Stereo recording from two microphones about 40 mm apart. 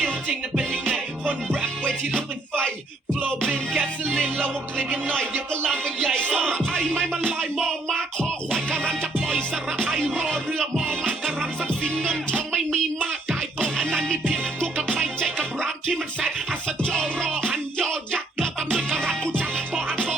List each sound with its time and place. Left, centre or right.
0.9 s music: left
3.2 s music: centre
11.7 s music: left
12.5 s a sound: centre
13.7 s music: left